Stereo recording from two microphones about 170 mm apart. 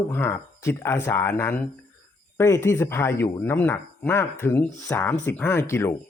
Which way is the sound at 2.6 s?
15° left (ahead or behind).